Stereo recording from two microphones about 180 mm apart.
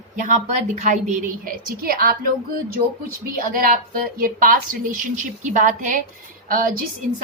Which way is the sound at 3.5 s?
50° right (ahead or behind).